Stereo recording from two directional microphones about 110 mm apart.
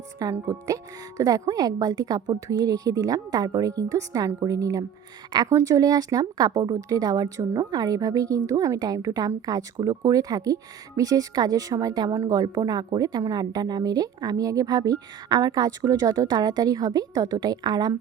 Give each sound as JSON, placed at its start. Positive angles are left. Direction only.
{"t": 0.2, "sound": "a woman's voice", "side_deg": -30}